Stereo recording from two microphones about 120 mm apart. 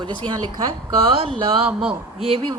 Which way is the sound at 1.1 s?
50° right (ahead or behind).